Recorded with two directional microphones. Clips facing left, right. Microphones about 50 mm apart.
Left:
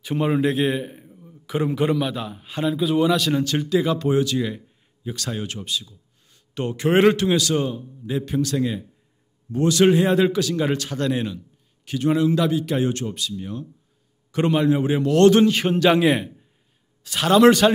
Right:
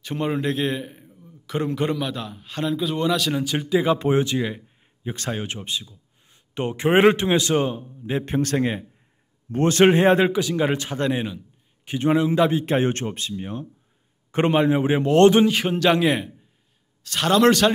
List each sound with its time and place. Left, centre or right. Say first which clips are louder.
0.0 s a man's voice: left 4 dB; centre
3.9 s speech: even; right
5.0 s a man's voice: right 1 dB; right
10.2 s speech: even; centre
15.3 s a man's voice: left 1 dB; centre